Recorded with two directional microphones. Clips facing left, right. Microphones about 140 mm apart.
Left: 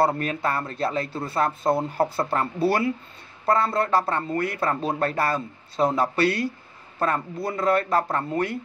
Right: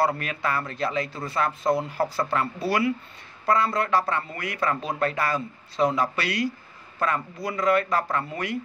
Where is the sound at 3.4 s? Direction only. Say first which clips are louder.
Left 1 dB; 30° left (ahead or behind).